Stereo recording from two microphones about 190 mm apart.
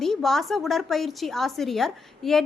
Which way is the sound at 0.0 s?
Centre (ahead or behind).